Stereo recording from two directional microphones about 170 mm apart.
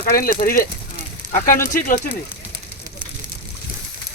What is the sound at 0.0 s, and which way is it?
Speech, 60° left (ahead or behind).